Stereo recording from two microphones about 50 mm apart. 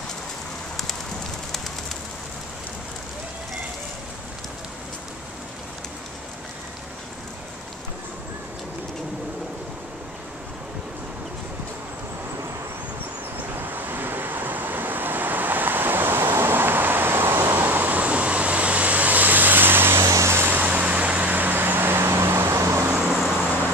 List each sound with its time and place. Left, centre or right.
13.6 s vehicle: right
20.0 s vehicle: right
20.4 s vehicle: right
23.1 s vehicle: centre